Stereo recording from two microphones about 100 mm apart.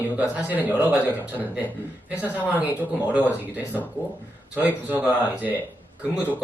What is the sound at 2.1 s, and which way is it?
Speech, 15° right (ahead or behind).